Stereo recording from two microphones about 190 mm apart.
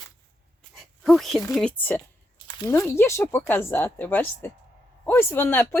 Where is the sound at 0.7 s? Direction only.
Centre (ahead or behind).